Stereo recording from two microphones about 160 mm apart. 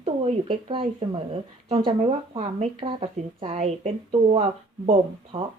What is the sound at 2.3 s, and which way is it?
Speech, 40° right (ahead or behind).